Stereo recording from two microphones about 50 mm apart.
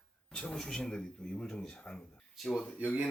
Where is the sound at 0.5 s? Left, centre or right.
Centre.